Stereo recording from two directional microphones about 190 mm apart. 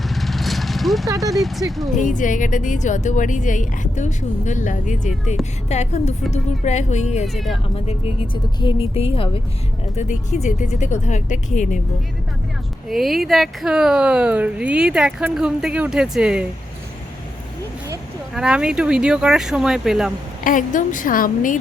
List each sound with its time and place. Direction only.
0.1 s vehicle: centre (ahead or behind)
1.0 s speech: 15° right (ahead or behind)
1.3 s speech: centre (ahead or behind)
2.0 s speech: 40° left (ahead or behind)
7.3 s speech: centre (ahead or behind)
7.9 s speech: 30° left (ahead or behind)
12.9 s speech: centre (ahead or behind)
18.3 s speech: 5° right (ahead or behind)
20.4 s a woman's voice: 45° left (ahead or behind)